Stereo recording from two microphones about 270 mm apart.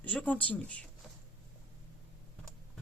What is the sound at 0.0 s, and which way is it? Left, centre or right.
Speech, centre.